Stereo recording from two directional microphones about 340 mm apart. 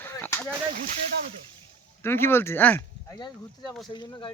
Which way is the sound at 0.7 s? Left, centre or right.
Right.